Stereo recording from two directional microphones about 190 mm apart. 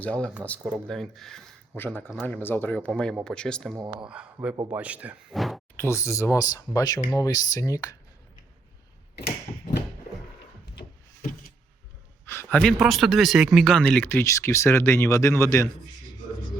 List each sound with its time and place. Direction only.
0.0 s speech: 5° left (ahead or behind)
2.2 s speech: 10° left (ahead or behind); by 4.5 s 5° right (ahead or behind)
4.5 s speech: 20° right (ahead or behind)
4.8 s speech: 10° right (ahead or behind)
5.7 s speech: 15° left (ahead or behind)
10.8 s a sound: 45° left (ahead or behind)
12.2 s speech: 15° left (ahead or behind)